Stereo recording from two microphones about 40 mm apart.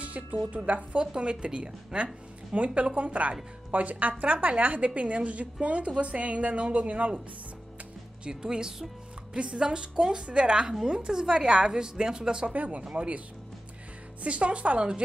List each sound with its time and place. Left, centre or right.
0.0 s speech: right
0.9 s a woman's voice: right
8.3 s a woman's voice: centre
12.5 s a woman's voice: right
14.2 s a woman's voice: right